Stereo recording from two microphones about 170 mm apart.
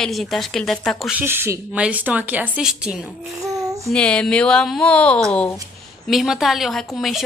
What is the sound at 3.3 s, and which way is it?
Babbling, 20° right (ahead or behind).